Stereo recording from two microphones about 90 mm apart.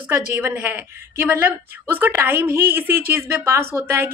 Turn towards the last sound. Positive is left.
turn(degrees=-25)  # may be behind; listen again after turning